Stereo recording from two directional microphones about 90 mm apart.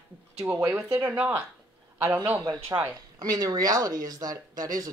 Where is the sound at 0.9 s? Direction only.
20° right (ahead or behind).